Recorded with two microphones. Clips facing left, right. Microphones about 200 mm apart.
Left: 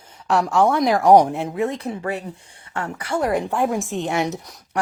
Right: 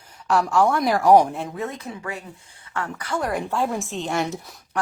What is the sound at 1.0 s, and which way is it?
Speech, 20° left (ahead or behind).